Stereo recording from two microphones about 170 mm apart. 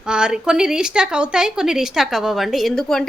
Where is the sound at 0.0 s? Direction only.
5° right (ahead or behind).